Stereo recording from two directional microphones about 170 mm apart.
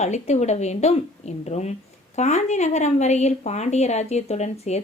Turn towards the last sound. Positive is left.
turn(degrees=40)  # may be behind; listen again after turning